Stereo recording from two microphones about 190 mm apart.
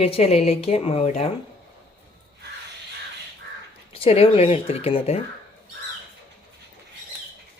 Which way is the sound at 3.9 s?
30° left (ahead or behind).